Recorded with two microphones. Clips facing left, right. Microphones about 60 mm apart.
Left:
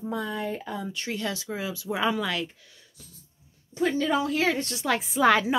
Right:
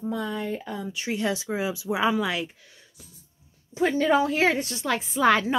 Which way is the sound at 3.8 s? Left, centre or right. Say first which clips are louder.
Right 3 dB; right.